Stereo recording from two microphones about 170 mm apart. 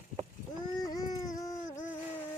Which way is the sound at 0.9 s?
20° left (ahead or behind).